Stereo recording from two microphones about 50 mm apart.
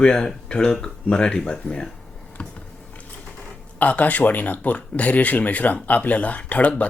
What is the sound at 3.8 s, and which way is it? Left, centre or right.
Speech, left.